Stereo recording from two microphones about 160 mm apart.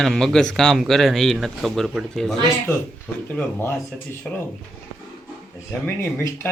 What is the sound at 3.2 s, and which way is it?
Speech, 10° left (ahead or behind).